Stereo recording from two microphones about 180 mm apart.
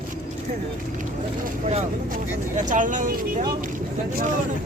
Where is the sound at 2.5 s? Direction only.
45° right (ahead or behind).